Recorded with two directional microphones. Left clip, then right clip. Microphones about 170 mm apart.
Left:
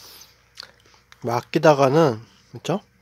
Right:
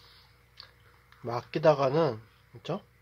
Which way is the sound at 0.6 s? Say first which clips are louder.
Left 10 dB; 65° left (ahead or behind).